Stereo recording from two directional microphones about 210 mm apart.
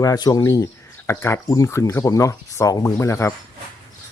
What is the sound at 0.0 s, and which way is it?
Speech, 15° left (ahead or behind).